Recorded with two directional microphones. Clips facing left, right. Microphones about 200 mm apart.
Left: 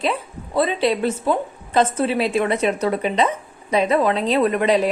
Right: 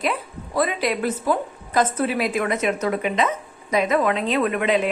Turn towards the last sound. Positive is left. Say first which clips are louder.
# left 3 dB
turn(degrees=35)  # may be behind; listen again after turning